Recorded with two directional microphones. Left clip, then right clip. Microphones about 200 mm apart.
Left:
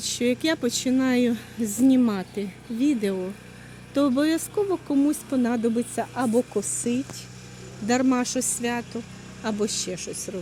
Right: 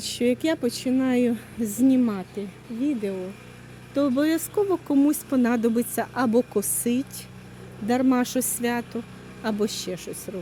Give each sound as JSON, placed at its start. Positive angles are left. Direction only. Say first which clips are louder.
{"t": 0.0, "sound": "speech", "louder": "right 1 dB", "side_deg": -10}
{"t": 3.9, "sound": "speech", "louder": "even", "side_deg": 5}
{"t": 8.2, "sound": "speech", "louder": "right 1 dB", "side_deg": -20}